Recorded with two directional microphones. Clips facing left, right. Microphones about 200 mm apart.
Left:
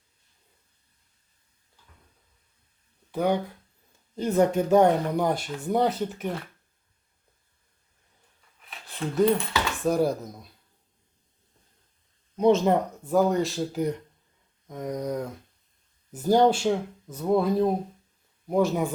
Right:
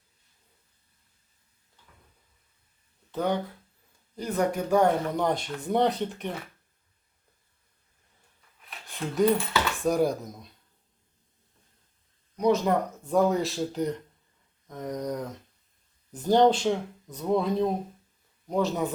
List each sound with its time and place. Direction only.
3.1 s speech: 10° left (ahead or behind)
4.1 s speech: 25° left (ahead or behind)
5.1 s speech: 5° left (ahead or behind)
8.9 s speech: centre (ahead or behind)
12.4 s speech: 25° left (ahead or behind)
13.1 s speech: centre (ahead or behind)
14.7 s a sound: 10° left (ahead or behind)
16.1 s speech: 10° left (ahead or behind)
18.4 s a sound: 10° left (ahead or behind)